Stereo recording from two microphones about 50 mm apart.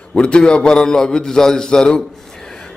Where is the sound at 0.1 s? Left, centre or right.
Left.